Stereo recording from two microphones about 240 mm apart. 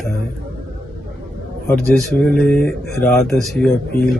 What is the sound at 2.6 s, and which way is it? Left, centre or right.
Speech, left.